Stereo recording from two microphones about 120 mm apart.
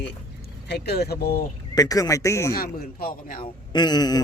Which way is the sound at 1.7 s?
30° left (ahead or behind).